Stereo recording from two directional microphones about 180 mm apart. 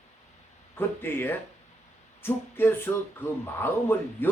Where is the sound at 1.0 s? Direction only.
10° left (ahead or behind).